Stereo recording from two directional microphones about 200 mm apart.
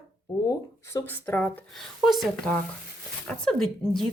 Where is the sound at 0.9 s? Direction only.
10° left (ahead or behind).